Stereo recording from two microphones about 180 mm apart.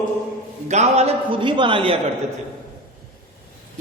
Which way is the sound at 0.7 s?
40° right (ahead or behind).